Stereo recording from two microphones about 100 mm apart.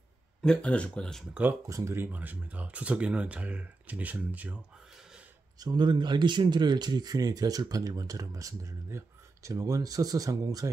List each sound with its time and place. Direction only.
0.4 s speech: 10° left (ahead or behind)
1.7 s speech: 30° right (ahead or behind)
2.0 s speech: 15° right (ahead or behind)
5.6 s speech: 50° right (ahead or behind)